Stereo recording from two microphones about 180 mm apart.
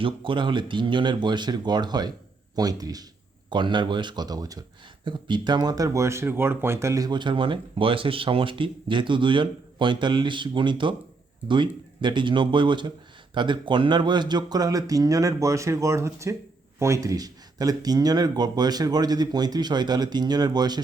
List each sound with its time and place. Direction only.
0.0 s speech: 25° right (ahead or behind)